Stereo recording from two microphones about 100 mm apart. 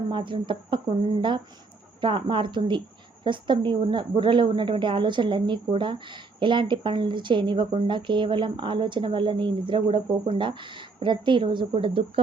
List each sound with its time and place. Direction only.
0.1 s a woman's voice: 55° right (ahead or behind)